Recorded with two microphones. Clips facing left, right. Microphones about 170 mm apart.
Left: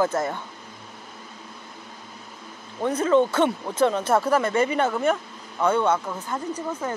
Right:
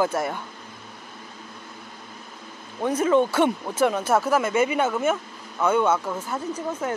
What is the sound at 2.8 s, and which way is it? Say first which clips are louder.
Speech: even; 10° right (ahead or behind).